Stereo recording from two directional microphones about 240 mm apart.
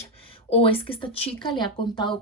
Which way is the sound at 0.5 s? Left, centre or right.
Left.